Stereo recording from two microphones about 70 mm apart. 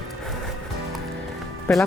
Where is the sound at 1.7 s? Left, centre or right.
Centre.